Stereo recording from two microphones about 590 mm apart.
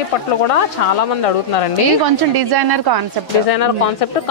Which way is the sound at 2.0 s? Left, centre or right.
Right.